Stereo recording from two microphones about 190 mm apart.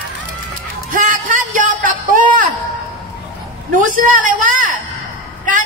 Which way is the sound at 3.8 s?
45° right (ahead or behind).